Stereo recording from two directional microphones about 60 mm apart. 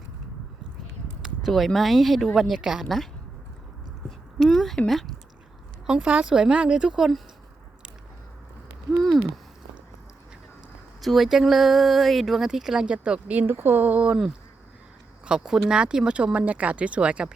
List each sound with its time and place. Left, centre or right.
1.2 s speech: centre
4.4 s a sound: centre
4.9 s speech: centre
5.8 s speech: centre
8.9 s a sound: centre
11.0 s speech: centre; by 13.5 s right
13.5 s speech: right
15.3 s speech: centre